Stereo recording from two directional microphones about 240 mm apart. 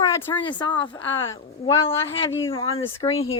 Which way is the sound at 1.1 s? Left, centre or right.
Left.